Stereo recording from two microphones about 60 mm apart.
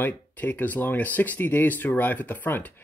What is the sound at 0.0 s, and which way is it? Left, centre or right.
Speech, left.